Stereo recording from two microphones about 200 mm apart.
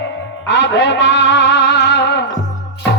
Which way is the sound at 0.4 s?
60° left (ahead or behind).